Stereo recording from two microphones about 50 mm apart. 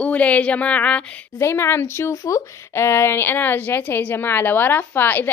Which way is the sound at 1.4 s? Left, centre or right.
Left.